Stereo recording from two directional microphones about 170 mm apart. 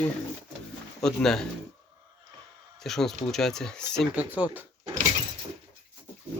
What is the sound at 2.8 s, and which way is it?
Speech, centre (ahead or behind).